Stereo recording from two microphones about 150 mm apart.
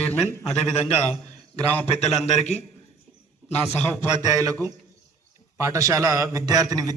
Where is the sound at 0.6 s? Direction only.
50° left (ahead or behind).